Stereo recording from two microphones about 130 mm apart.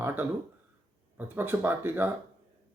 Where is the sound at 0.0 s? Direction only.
15° right (ahead or behind).